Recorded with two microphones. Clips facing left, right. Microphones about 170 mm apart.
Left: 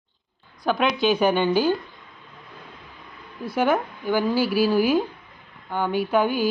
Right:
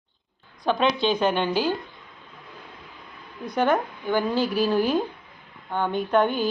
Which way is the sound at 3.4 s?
5° left (ahead or behind).